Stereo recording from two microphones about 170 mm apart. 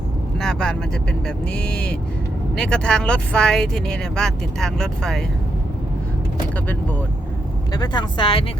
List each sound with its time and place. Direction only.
0.3 s vehicle: 5° left (ahead or behind)
1.5 s speech: 5° left (ahead or behind)
7.7 s speech: 25° left (ahead or behind)